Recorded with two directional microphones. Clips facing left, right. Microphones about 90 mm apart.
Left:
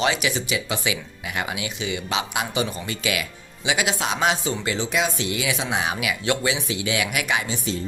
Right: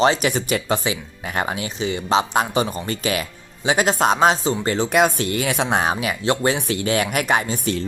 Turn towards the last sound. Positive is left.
turn(degrees=-45)  # may be behind; listen again after turning